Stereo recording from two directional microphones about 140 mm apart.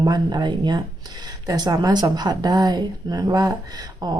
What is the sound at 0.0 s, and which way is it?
Speech, 30° right (ahead or behind).